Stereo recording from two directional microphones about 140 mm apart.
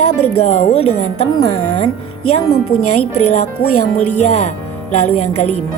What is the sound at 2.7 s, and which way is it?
Speech, 90° left.